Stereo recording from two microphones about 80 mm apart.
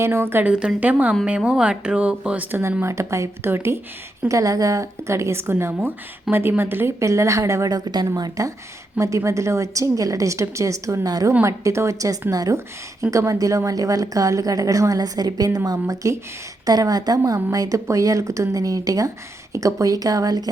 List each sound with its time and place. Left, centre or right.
0.0 s a woman's voice: right
0.4 s a woman's voice: centre
2.8 s a woman's voice: right
4.3 s a woman's voice: right
11.4 s a woman's voice: right
12.5 s speech: right